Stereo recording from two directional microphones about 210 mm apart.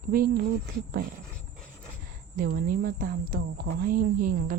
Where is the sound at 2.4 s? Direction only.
40° right (ahead or behind).